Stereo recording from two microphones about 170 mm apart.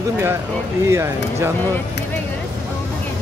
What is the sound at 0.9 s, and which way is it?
Speech, 15° right (ahead or behind).